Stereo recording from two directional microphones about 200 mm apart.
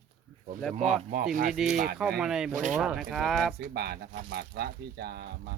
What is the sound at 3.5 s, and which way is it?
Speech, 50° right (ahead or behind).